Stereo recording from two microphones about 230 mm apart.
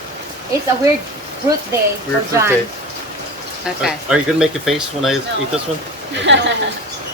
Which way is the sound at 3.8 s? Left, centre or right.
Centre.